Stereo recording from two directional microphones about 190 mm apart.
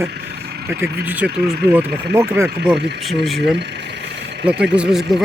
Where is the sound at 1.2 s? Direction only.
60° right (ahead or behind).